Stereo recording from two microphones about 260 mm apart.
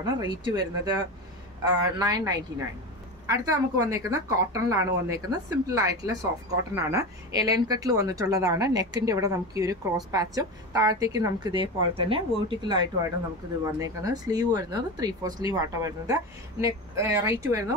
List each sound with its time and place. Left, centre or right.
0.0 s speech: centre